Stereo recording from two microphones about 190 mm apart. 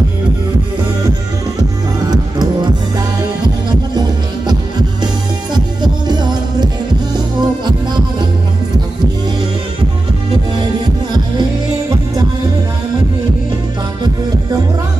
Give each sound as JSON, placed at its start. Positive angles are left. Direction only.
{"t": 2.0, "sound": "music", "side_deg": -20}
{"t": 4.5, "sound": "music", "side_deg": -20}